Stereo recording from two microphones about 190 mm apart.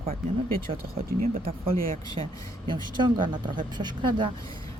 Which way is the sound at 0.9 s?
50° right (ahead or behind).